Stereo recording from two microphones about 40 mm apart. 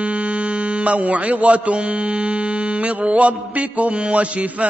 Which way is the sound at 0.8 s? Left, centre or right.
Right.